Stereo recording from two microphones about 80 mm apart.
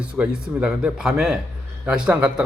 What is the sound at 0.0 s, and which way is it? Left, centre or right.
A man's voice, centre.